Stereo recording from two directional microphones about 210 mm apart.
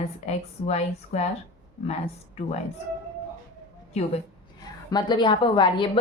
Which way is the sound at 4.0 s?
30° left (ahead or behind).